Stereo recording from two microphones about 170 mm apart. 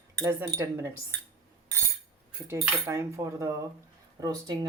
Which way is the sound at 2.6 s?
15° right (ahead or behind).